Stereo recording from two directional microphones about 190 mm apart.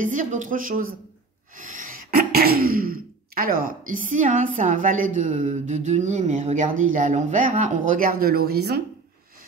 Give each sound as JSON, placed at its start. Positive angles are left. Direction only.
{"t": 0.0, "sound": "speech", "side_deg": -45}